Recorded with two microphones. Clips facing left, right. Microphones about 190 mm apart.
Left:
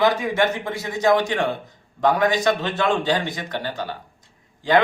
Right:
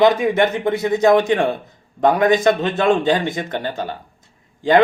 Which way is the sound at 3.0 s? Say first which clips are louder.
Right 5 dB; 50° right (ahead or behind).